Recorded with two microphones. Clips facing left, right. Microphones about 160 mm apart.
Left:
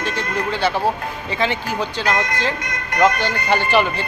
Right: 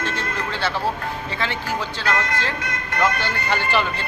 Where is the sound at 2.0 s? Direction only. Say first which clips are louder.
Left 3 dB; 15° left (ahead or behind).